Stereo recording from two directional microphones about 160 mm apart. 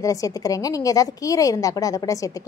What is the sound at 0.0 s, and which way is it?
A woman's voice, 20° left (ahead or behind).